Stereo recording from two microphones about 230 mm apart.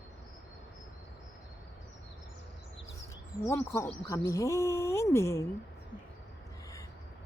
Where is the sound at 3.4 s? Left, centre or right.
Centre.